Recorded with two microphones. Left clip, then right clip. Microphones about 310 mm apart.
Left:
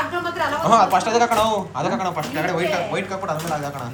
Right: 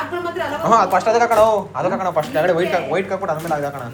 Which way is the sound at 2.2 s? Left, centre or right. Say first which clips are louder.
Right 5 dB; centre.